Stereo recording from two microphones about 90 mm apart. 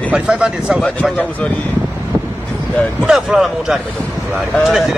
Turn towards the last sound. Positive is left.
turn(degrees=0)  # may be behind; listen again after turning